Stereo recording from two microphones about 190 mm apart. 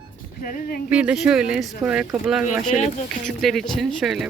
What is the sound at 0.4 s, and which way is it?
Speech, 45° left (ahead or behind).